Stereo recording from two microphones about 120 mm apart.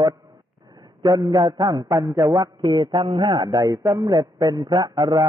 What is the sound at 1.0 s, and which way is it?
A man's voice, 30° right (ahead or behind).